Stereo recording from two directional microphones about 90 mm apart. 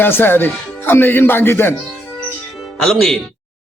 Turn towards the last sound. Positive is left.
turn(degrees=5)  # may be behind; listen again after turning